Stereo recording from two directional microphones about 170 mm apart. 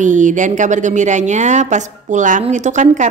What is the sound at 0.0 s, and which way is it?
A woman's voice, 45° right (ahead or behind).